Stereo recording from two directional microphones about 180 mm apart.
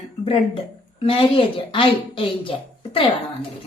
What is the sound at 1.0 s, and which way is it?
A woman's voice, 30° left (ahead or behind).